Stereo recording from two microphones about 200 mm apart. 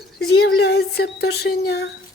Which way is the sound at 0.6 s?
55° left (ahead or behind).